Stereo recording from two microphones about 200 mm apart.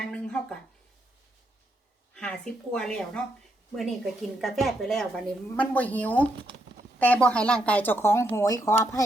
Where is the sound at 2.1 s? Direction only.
5° left (ahead or behind).